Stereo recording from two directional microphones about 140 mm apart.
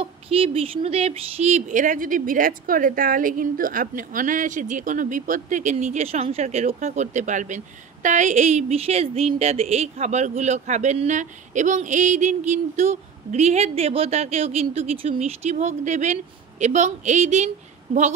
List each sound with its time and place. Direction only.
0.0 s speech: 40° right (ahead or behind)
15.4 s speech: 60° right (ahead or behind)